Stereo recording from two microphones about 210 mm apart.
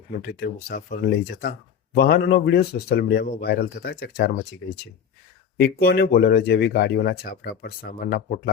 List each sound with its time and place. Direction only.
0.2 s speech: 50° left (ahead or behind)
5.5 s speech: 45° left (ahead or behind)